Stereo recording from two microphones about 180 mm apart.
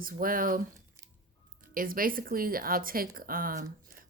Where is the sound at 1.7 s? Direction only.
50° right (ahead or behind).